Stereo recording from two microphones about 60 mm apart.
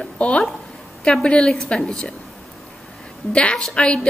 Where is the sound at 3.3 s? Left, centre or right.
Centre.